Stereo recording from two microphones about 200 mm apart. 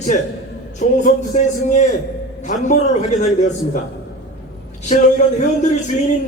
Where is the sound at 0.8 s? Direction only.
35° left (ahead or behind).